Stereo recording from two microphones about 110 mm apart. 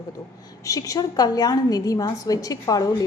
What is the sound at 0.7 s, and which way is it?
A woman's voice, 30° left (ahead or behind).